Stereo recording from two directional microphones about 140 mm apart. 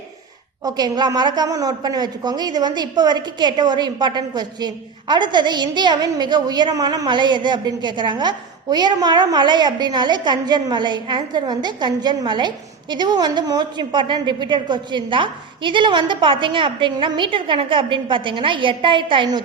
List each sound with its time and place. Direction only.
0.6 s a woman's voice: 30° right (ahead or behind)